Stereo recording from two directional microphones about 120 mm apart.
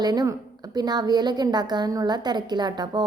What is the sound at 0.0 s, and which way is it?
A woman's voice, 35° right (ahead or behind).